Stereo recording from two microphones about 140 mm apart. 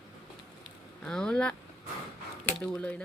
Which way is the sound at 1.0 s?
5° left (ahead or behind).